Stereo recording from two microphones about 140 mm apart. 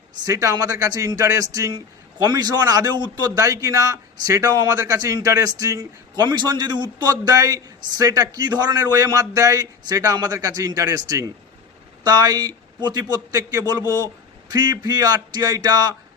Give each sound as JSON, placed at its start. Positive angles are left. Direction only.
{"t": 0.3, "sound": "a man's voice", "side_deg": -25}